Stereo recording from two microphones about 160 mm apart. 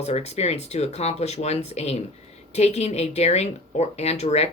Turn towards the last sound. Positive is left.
turn(degrees=40)  # may be behind; listen again after turning